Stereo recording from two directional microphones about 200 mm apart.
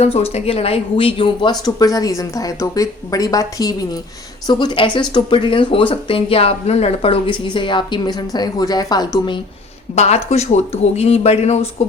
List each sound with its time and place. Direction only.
0.0 s speech: 30° left (ahead or behind)
9.9 s speech: 35° left (ahead or behind)